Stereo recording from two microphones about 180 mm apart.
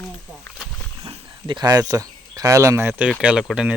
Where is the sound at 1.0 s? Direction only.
30° right (ahead or behind); by 3.8 s 5° right (ahead or behind).